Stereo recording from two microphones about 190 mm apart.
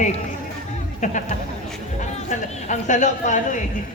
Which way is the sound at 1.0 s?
40° left (ahead or behind).